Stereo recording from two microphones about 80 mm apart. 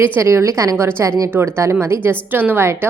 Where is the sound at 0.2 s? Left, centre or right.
Right.